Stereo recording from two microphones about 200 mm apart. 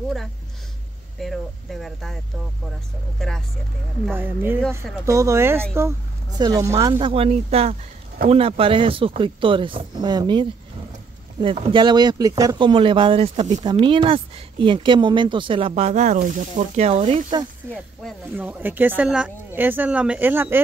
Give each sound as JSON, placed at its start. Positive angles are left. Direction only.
{"t": 1.2, "sound": "speech", "side_deg": 0}
{"t": 3.2, "sound": "speech", "side_deg": 0}
{"t": 4.0, "sound": "speech", "side_deg": -10}
{"t": 4.6, "sound": "speech", "side_deg": 5}
{"t": 5.0, "sound": "speech", "side_deg": -15}
{"t": 11.4, "sound": "speech", "side_deg": -30}
{"t": 18.3, "sound": "speech", "side_deg": -10}